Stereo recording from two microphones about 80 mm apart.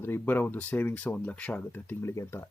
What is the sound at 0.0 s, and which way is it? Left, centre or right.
Speech, left.